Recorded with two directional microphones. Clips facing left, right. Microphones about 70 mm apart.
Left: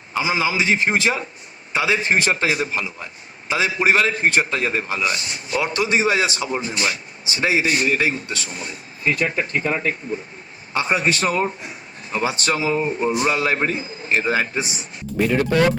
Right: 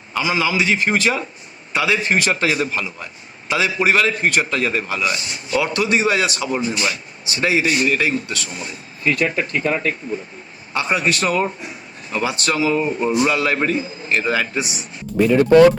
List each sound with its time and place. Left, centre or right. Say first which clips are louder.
0.1 s a man's voice: right 1 dB; left